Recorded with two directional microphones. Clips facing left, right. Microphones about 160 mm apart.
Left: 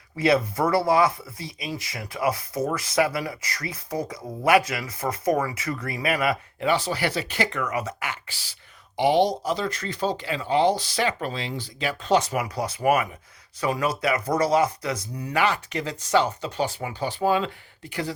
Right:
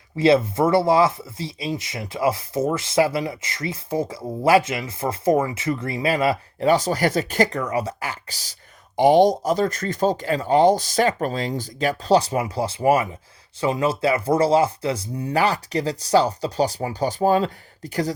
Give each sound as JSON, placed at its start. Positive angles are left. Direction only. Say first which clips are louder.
{"t": 0.2, "sound": "speech", "louder": "right 4 dB", "side_deg": -25}
{"t": 6.7, "sound": "speech", "louder": "right 5 dB", "side_deg": -45}